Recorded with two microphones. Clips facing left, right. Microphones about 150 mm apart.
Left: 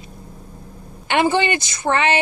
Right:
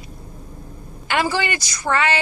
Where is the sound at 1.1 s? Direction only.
20° left (ahead or behind).